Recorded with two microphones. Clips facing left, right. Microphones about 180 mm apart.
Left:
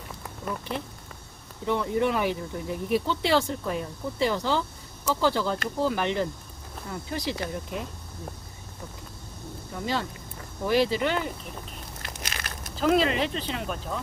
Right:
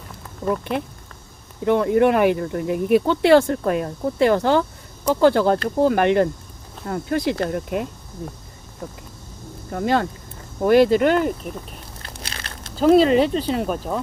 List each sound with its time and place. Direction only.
1.6 s speech: 60° right (ahead or behind)
9.7 s speech: 55° right (ahead or behind)
12.2 s crumpling: 30° right (ahead or behind)
12.8 s speech: 35° right (ahead or behind)